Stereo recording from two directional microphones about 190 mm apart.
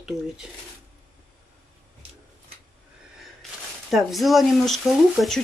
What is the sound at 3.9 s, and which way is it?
Speech, centre (ahead or behind).